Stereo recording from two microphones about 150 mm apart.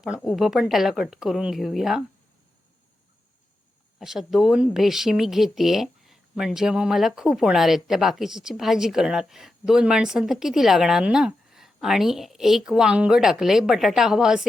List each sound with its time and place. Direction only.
0.2 s speech: centre (ahead or behind)
4.0 s speech: 5° right (ahead or behind)